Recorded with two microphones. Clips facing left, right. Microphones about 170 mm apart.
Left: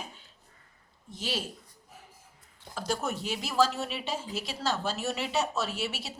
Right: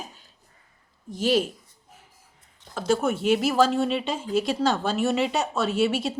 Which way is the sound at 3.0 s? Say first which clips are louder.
Right 11 dB; 60° right (ahead or behind).